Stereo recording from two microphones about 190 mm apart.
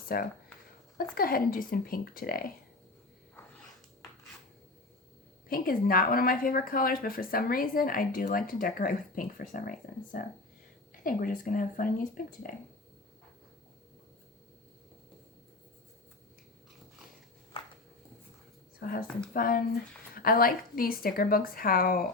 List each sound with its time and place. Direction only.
0.1 s speech: 50° left (ahead or behind)
5.5 s speech: 50° left (ahead or behind)
17.5 s a sound: 30° left (ahead or behind)
18.8 s speech: 50° left (ahead or behind)